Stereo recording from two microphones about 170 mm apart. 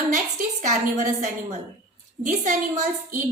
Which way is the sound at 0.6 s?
45° right (ahead or behind).